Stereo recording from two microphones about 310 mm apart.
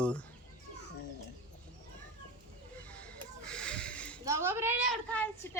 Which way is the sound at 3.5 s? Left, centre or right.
Centre.